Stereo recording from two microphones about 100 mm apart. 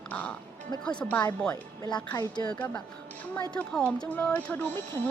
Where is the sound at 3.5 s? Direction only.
10° left (ahead or behind).